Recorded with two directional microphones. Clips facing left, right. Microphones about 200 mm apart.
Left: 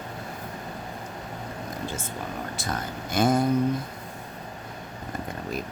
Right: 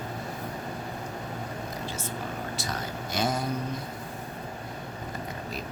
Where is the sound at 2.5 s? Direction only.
50° left (ahead or behind).